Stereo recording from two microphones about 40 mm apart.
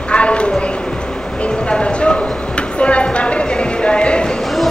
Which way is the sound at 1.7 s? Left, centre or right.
Left.